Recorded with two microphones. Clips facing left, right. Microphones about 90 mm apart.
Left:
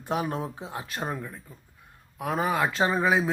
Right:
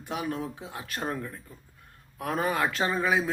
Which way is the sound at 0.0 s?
35° left (ahead or behind).